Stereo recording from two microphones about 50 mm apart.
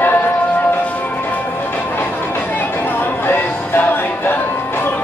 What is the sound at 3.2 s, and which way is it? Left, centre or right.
Music, left.